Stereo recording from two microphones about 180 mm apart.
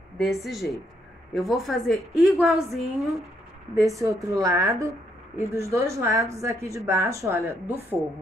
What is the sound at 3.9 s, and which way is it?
A woman's voice, 15° right (ahead or behind).